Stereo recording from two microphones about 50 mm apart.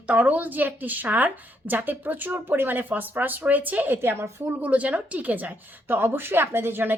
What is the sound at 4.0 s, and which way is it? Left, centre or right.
Speech, right.